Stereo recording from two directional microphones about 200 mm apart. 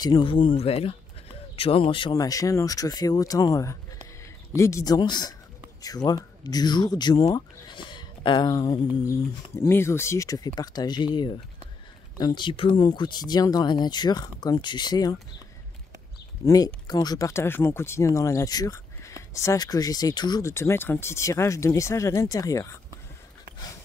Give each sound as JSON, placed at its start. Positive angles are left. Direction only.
{"t": 0.0, "sound": "speech", "side_deg": 25}
{"t": 12.2, "sound": "speech", "side_deg": 20}
{"t": 16.4, "sound": "speech", "side_deg": 20}